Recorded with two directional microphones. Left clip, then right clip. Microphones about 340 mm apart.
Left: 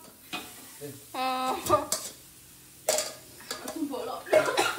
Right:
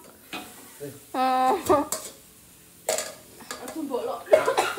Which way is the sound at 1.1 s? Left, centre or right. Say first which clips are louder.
Right 7 dB; right.